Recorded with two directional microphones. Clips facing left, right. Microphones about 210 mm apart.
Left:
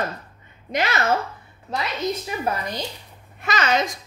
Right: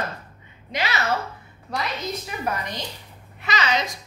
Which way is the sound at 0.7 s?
50° left (ahead or behind).